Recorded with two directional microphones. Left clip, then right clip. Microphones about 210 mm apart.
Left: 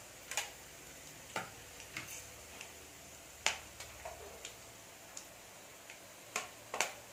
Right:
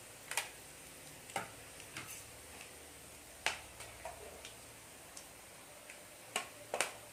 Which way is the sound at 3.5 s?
Centre (ahead or behind).